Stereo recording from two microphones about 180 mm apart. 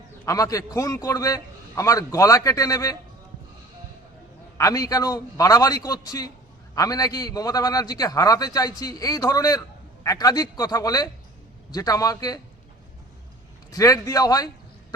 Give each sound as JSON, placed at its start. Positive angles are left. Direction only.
{"t": 0.3, "sound": "a man's voice", "side_deg": 20}
{"t": 4.5, "sound": "a man's voice", "side_deg": 20}
{"t": 13.7, "sound": "a man's voice", "side_deg": 20}